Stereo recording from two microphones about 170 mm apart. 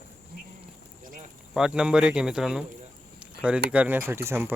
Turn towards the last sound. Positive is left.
turn(degrees=-15)  # may be behind; listen again after turning